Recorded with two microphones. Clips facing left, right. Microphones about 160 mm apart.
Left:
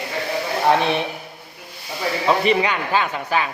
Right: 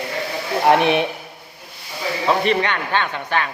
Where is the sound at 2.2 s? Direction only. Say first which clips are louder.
Even; 5° left (ahead or behind).